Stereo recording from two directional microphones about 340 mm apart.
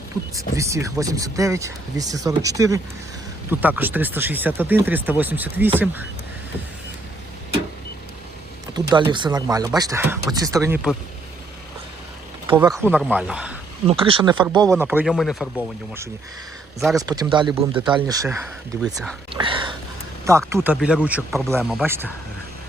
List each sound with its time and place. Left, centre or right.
0.3 s speech: centre
8.7 s speech: centre
12.5 s speech: centre
13.8 s speech: centre
19.3 s a sound: centre
20.2 s speech: centre